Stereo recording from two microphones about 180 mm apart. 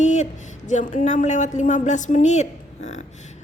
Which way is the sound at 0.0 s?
40° left (ahead or behind).